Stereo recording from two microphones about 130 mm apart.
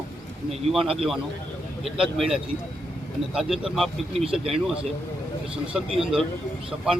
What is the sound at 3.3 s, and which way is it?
Speech, 5° right (ahead or behind).